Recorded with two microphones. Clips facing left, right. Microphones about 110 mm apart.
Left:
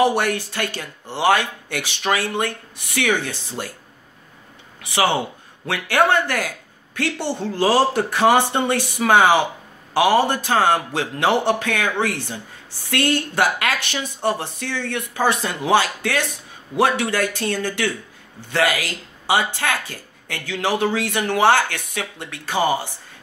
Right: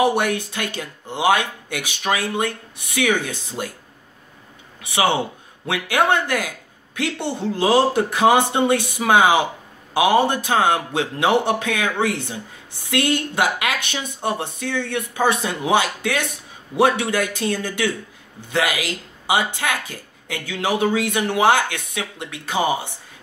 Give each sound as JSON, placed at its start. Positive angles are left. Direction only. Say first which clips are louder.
{"t": 0.0, "sound": "speech", "louder": "even", "side_deg": -15}
{"t": 5.7, "sound": "speech", "louder": "left 1 dB", "side_deg": -15}